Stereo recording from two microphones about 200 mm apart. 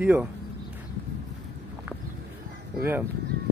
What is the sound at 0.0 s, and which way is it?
Speech, 10° right (ahead or behind).